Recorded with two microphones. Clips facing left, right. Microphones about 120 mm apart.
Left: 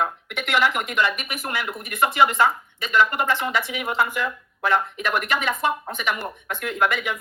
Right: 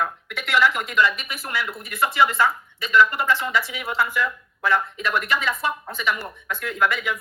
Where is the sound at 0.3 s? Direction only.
15° left (ahead or behind).